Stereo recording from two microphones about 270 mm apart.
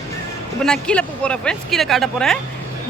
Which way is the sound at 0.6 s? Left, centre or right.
Centre.